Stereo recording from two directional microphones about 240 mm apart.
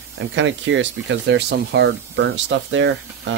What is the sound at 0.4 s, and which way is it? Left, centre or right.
Speech, right.